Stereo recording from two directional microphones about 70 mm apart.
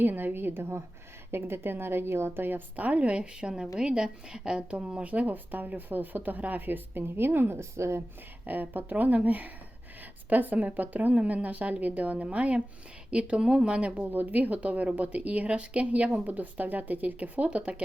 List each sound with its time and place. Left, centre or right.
0.0 s a woman's voice: right
8.4 s speech: right
13.9 s speech: right